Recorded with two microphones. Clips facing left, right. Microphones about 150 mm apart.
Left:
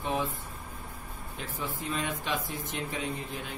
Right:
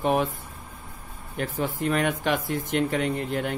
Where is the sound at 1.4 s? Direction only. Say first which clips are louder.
Right 10 dB; 70° right (ahead or behind).